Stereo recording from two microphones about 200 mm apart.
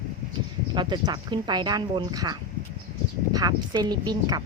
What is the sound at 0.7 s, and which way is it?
Speech, 20° right (ahead or behind).